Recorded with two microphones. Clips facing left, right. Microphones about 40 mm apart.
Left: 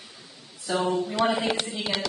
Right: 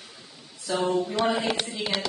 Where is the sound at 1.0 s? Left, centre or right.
Centre.